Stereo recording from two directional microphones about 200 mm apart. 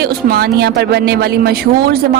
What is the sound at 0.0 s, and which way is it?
A woman's voice, 50° right (ahead or behind).